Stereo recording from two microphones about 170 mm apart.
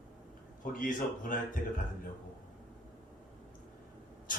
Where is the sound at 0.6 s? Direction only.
55° left (ahead or behind).